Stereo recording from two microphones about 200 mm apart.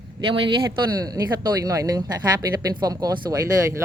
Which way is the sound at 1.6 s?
15° right (ahead or behind).